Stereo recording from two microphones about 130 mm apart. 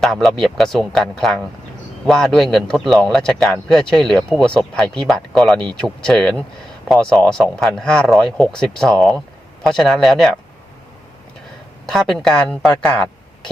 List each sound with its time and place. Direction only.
0.0 s speech: centre (ahead or behind)
11.9 s speech: 5° left (ahead or behind)